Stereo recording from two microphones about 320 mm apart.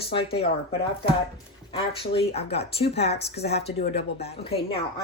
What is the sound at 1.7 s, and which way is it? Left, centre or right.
Speech, centre.